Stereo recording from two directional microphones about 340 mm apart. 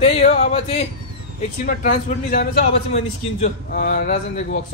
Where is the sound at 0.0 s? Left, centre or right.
Centre.